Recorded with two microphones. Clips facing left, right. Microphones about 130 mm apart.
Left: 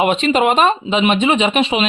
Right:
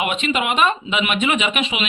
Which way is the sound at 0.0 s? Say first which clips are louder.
Left 7 dB; 35° left (ahead or behind).